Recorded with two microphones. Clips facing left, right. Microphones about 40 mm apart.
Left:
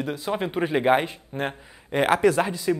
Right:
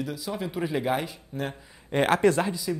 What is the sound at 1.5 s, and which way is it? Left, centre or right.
Speech, centre.